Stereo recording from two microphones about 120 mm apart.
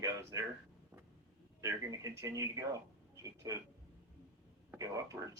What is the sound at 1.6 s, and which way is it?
Speech, 30° right (ahead or behind).